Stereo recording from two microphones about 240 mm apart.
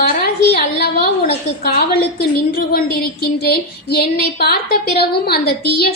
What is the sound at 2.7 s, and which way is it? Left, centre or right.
Speech, left.